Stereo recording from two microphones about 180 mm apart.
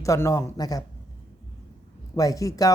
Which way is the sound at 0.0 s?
15° left (ahead or behind).